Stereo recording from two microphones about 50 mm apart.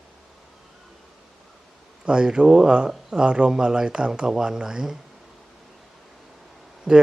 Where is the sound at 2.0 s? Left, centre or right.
Centre.